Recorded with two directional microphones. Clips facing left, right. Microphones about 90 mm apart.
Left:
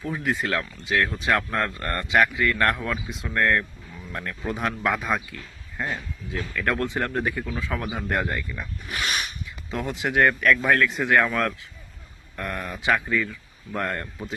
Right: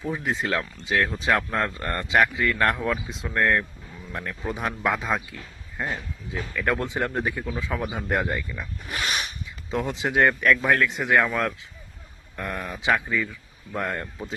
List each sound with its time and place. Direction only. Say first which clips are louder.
0.0 s speech: left 1 dB; 20° right (ahead or behind)
2.0 s speech: even; 30° right (ahead or behind); by 8.1 s 5° right (ahead or behind)
8.1 s speech: right 1 dB; 15° right (ahead or behind)
8.9 s speech: even; 30° right (ahead or behind); by 14.3 s 10° right (ahead or behind)